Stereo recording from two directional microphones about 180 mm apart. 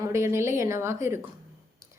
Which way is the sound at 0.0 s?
15° right (ahead or behind).